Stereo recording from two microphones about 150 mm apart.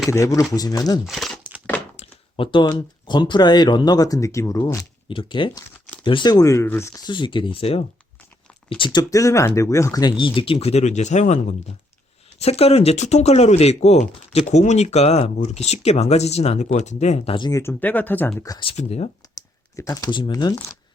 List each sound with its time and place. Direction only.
0.1 s speech: 20° left (ahead or behind)
1.0 s speech: centre (ahead or behind)
2.0 s a sound: 35° left (ahead or behind)
2.6 s speech: 30° left (ahead or behind)
5.0 s speech: 35° left (ahead or behind)
8.8 s speech: 25° left (ahead or behind); by 11.3 s 50° left (ahead or behind)
12.4 s speech: 45° left (ahead or behind)
17.5 s speech: 15° left (ahead or behind)
18.4 s speech: 30° left (ahead or behind)
18.8 s speech: 45° left (ahead or behind)
19.7 s speech: 20° left (ahead or behind)